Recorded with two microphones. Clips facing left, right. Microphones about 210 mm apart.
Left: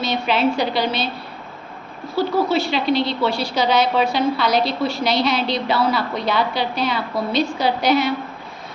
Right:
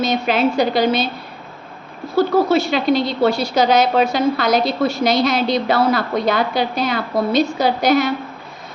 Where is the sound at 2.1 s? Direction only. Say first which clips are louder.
Right 4 dB; 45° right (ahead or behind).